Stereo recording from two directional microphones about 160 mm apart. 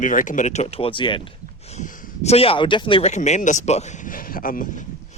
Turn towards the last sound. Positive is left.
turn(degrees=60)  # may be behind; listen again after turning